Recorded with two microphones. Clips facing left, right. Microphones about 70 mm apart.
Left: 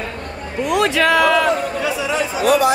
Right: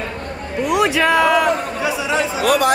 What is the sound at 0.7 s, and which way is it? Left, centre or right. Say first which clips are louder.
A man's voice: even; centre.